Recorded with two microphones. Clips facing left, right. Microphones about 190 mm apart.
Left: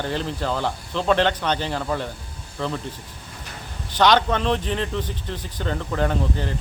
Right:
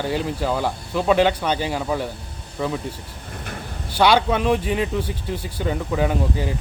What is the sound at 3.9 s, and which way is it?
Speech, 10° right (ahead or behind).